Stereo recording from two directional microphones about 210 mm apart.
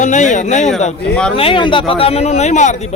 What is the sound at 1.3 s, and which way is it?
A man's voice, 25° left (ahead or behind).